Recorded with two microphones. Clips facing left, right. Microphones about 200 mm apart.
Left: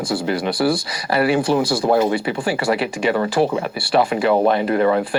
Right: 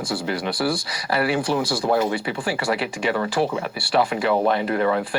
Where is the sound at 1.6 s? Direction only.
55° left (ahead or behind).